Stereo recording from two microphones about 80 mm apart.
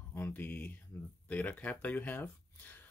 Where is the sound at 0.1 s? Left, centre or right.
Left.